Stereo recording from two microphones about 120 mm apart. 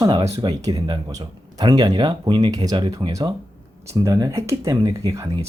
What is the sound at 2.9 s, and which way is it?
Speech, 30° right (ahead or behind).